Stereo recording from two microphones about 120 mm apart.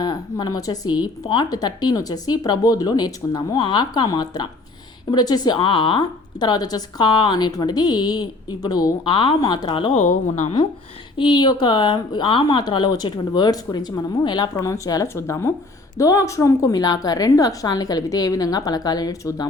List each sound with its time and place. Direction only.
0.0 s speech: 35° left (ahead or behind)
9.6 s speech: 45° left (ahead or behind)
9.9 s speech: 75° left (ahead or behind)
11.2 s speech: 40° left (ahead or behind)